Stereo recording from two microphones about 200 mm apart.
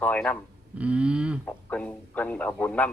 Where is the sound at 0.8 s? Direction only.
5° right (ahead or behind).